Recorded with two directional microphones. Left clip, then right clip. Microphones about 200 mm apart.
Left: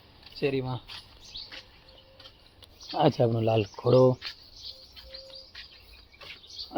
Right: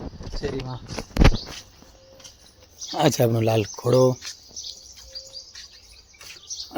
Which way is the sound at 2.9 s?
15° right (ahead or behind).